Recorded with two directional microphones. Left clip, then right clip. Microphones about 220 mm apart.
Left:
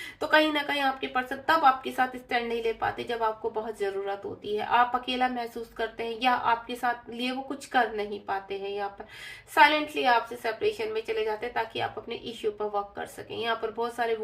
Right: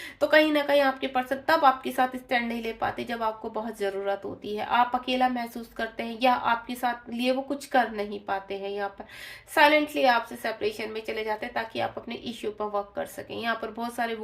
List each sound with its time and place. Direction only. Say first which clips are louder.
0.2 s a woman's voice: right 2 dB; 40° right (ahead or behind)